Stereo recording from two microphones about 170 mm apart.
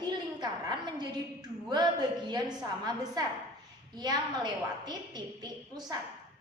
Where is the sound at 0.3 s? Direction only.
25° right (ahead or behind).